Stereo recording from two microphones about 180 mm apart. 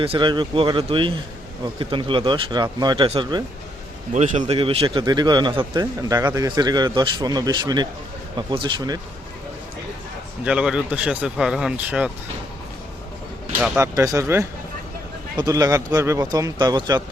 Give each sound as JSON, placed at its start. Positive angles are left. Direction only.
{"t": 0.0, "sound": "speech", "side_deg": -30}
{"t": 4.1, "sound": "speech", "side_deg": -40}
{"t": 10.4, "sound": "speech", "side_deg": -5}
{"t": 13.6, "sound": "speech", "side_deg": -15}